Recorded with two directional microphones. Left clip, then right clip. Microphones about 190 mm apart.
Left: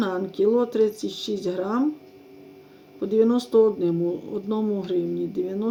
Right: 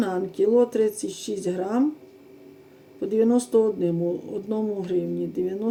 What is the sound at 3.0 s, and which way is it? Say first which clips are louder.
Speech: left 1 dB; 15° left (ahead or behind).